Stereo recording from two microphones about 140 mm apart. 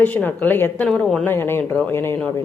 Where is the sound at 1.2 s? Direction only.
15° left (ahead or behind).